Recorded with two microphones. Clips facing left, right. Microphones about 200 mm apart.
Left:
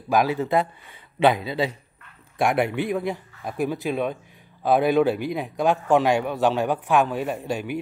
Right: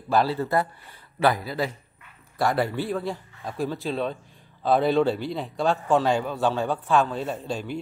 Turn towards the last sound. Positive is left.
turn(degrees=15)  # may be behind; listen again after turning